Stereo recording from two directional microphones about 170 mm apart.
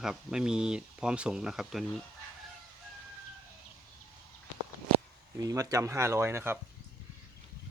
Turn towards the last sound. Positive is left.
turn(degrees=-15)  # may be behind; listen again after turning